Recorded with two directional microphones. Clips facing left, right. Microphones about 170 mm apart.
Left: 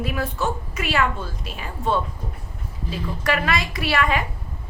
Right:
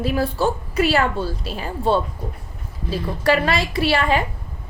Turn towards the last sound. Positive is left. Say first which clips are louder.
# right 3 dB
turn(degrees=-30)  # may be behind; listen again after turning